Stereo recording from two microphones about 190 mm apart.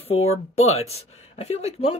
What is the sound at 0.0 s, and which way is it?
Speech, 35° left (ahead or behind).